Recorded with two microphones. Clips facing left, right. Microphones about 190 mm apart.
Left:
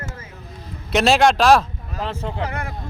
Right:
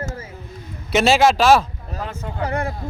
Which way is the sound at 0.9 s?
Centre (ahead or behind).